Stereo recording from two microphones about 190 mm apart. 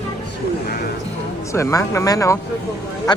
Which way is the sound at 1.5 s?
15° left (ahead or behind).